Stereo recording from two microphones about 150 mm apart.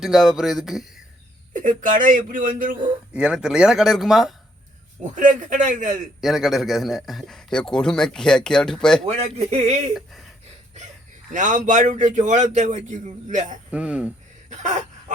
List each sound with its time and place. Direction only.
0.0 s a man's voice: centre (ahead or behind)
1.5 s a man's voice: 60° right (ahead or behind)
3.1 s a man's voice: 5° right (ahead or behind)
5.1 s a man's voice: 55° right (ahead or behind)
6.2 s a man's voice: centre (ahead or behind)
9.0 s speech: 45° right (ahead or behind)
9.9 s a man's voice: centre (ahead or behind)
11.3 s a man's voice: 55° right (ahead or behind)
13.7 s speech: 10° right (ahead or behind)
14.5 s speech: 50° right (ahead or behind)